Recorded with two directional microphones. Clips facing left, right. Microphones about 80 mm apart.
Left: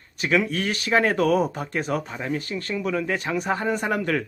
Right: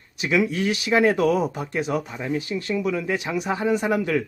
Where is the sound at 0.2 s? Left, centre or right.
Centre.